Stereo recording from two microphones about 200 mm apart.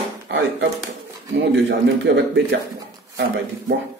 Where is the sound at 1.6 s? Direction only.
60° right (ahead or behind).